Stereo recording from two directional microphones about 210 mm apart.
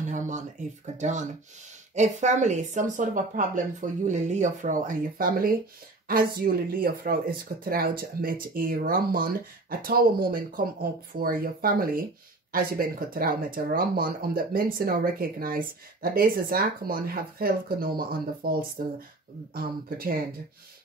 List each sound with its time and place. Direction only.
0.9 s speech: 35° right (ahead or behind)